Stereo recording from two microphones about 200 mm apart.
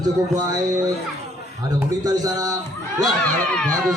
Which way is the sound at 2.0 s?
20° right (ahead or behind).